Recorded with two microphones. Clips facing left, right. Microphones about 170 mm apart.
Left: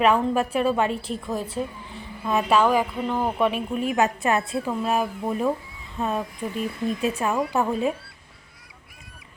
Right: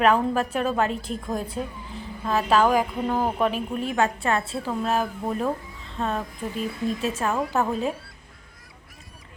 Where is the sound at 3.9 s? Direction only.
20° left (ahead or behind).